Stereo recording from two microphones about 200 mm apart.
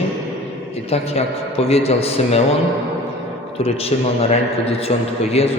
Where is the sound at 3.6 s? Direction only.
30° left (ahead or behind).